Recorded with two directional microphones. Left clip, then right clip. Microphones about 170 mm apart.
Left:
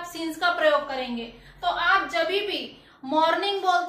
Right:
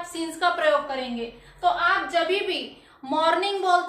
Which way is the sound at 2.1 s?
25° right (ahead or behind).